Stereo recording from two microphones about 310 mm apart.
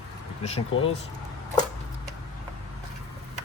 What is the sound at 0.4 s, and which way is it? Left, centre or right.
Speech, centre.